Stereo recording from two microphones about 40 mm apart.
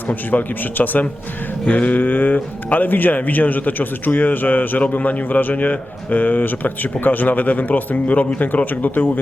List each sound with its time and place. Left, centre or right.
0.1 s a man's voice: left